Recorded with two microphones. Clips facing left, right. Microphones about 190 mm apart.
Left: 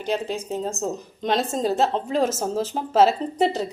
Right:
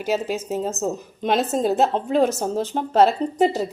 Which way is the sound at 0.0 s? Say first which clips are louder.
Right 2 dB; 5° right (ahead or behind).